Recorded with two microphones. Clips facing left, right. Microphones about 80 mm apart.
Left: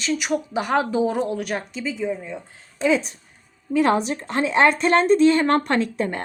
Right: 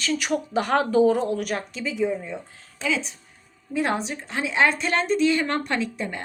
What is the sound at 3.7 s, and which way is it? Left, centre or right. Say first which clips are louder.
A woman's voice: left 6 dB; left.